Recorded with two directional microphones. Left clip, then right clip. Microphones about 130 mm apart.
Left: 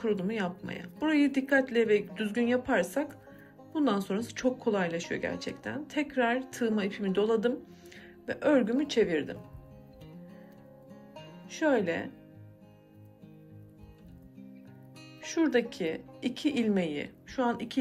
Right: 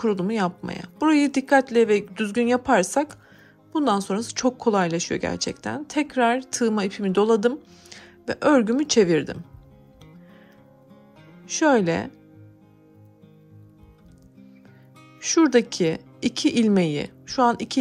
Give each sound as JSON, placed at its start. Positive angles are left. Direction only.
{"t": 0.0, "sound": "speech", "side_deg": -45}
{"t": 11.4, "sound": "speech", "side_deg": -50}
{"t": 15.1, "sound": "speech", "side_deg": -55}